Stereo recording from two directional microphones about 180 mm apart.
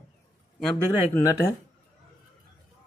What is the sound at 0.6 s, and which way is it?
Speech, 5° left (ahead or behind).